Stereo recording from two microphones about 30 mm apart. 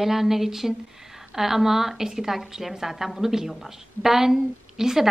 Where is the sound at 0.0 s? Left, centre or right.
Centre.